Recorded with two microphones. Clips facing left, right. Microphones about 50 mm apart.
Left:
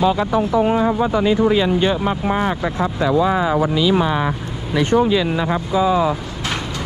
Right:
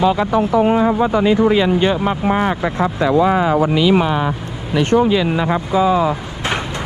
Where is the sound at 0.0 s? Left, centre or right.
Right.